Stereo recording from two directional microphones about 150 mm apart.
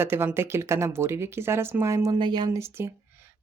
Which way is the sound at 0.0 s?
15° right (ahead or behind).